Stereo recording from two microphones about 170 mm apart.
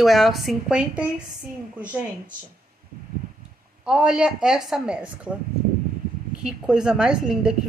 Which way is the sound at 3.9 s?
5° right (ahead or behind).